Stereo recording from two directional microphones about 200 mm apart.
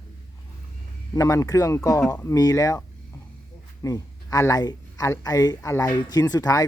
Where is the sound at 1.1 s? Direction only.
15° left (ahead or behind).